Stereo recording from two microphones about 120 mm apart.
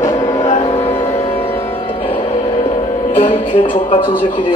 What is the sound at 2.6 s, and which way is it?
Music, 90° left.